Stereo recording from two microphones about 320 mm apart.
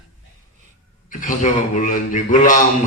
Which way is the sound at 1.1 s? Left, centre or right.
Left.